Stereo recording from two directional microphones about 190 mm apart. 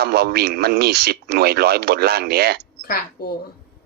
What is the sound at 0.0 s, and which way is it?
Speech, 55° right (ahead or behind).